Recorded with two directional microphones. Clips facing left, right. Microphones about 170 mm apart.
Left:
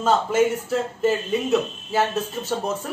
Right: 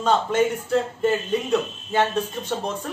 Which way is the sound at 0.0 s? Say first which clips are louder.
Left 1 dB; 5° left (ahead or behind).